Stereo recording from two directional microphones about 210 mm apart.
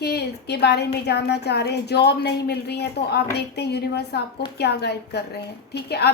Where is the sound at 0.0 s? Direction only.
50° left (ahead or behind).